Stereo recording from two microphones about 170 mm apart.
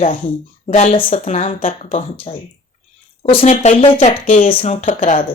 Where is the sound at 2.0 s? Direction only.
35° left (ahead or behind).